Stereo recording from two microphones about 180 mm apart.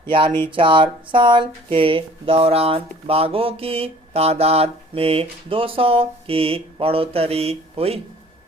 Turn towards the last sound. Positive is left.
turn(degrees=-35)  # may be behind; listen again after turning